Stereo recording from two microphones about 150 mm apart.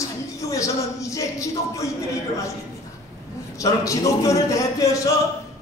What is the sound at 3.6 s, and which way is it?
A man's voice, 20° left (ahead or behind).